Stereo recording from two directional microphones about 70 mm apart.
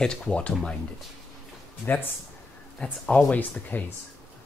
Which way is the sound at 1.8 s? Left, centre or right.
Left.